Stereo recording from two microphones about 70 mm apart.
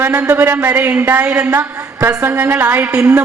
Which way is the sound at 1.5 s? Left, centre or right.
Right.